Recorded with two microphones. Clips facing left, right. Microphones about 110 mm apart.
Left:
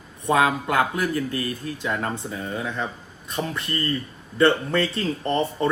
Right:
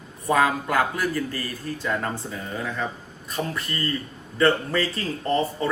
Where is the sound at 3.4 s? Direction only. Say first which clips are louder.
Left 1 dB; 15° left (ahead or behind).